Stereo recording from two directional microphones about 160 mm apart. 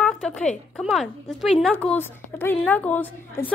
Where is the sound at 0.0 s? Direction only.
5° left (ahead or behind).